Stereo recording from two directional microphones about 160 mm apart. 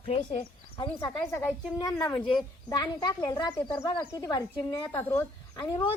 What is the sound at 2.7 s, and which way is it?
Speech, 25° left (ahead or behind).